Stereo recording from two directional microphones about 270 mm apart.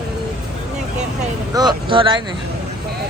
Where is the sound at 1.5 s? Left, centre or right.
Centre.